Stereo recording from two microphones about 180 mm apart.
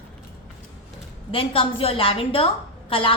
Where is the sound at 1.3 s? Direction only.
30° left (ahead or behind).